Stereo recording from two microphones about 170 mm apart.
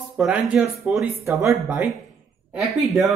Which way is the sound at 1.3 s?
15° right (ahead or behind).